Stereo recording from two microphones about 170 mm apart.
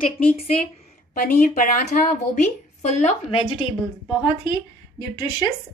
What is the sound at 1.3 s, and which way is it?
A woman's voice, 55° left (ahead or behind).